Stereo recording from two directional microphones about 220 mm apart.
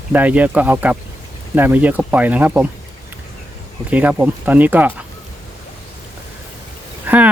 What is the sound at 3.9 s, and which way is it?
Speech, 5° right (ahead or behind).